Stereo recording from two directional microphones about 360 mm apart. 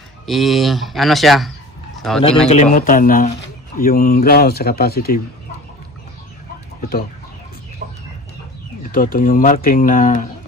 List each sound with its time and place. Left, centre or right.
0.3 s speech: centre
2.4 s speech: left
7.8 s chicken: right
8.9 s speech: left